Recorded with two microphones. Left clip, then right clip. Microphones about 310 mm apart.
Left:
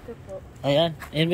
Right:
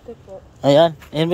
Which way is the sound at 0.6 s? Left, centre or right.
Centre.